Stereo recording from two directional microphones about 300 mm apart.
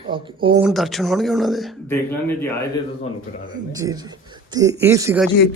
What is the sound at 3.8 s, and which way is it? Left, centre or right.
Speech, centre.